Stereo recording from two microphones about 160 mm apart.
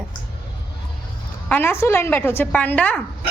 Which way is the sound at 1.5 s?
10° left (ahead or behind).